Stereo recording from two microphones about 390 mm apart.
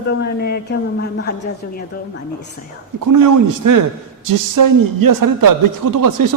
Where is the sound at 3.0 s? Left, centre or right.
Right.